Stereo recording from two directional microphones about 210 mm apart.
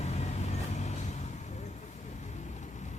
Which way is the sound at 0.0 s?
30° left (ahead or behind).